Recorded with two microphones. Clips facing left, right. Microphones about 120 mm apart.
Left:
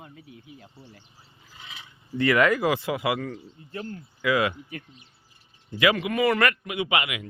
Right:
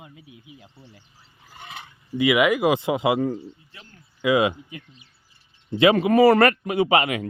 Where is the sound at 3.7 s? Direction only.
45° left (ahead or behind).